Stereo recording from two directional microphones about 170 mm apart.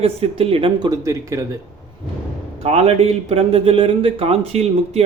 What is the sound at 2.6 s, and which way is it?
Speech, 35° right (ahead or behind).